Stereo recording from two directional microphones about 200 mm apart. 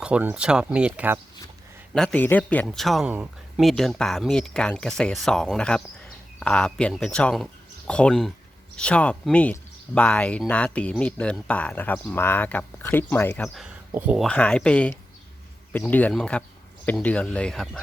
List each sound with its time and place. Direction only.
0.0 s speech: 5° right (ahead or behind)
1.9 s speech: 5° left (ahead or behind)
14.3 s speech: 5° left (ahead or behind)